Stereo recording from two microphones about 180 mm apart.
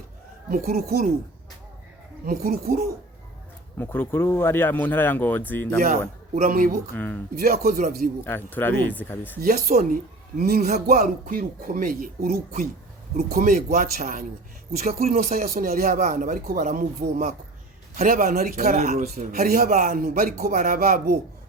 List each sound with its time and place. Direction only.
0.5 s speech: 55° right (ahead or behind)
2.2 s speech: 55° right (ahead or behind)
3.8 s speech: 10° left (ahead or behind)
5.8 s speech: 45° right (ahead or behind)
6.9 s speech: 10° left (ahead or behind)
7.3 s speech: 55° right (ahead or behind)
8.2 s speech: 10° left (ahead or behind)
9.4 s speech: 55° right (ahead or behind)